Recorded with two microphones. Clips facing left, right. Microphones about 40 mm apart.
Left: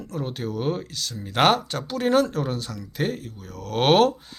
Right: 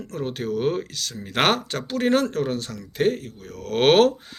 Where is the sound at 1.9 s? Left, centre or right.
Right.